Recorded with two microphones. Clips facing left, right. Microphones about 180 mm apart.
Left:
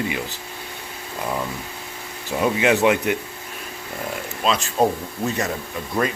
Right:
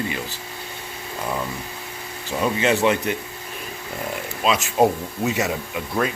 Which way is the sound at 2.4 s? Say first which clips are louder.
Left 2 dB; 10° left (ahead or behind).